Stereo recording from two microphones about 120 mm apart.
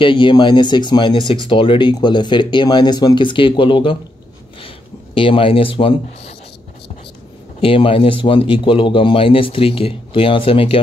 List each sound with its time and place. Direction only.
0.0 s speech: 40° left (ahead or behind)
4.6 s a sound: 50° left (ahead or behind)
7.6 s speech: 50° left (ahead or behind)